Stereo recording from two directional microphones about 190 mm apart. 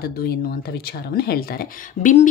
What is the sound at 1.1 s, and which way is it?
Speech, 55° left (ahead or behind).